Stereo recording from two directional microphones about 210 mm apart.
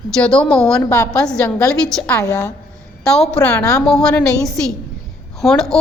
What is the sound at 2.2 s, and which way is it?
Speech, 15° left (ahead or behind).